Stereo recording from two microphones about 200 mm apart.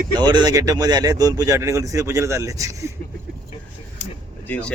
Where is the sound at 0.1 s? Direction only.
20° right (ahead or behind).